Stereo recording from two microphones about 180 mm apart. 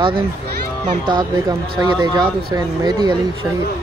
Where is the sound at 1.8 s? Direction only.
25° right (ahead or behind).